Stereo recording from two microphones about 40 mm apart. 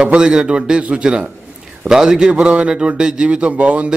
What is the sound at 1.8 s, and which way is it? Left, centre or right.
Speech, centre.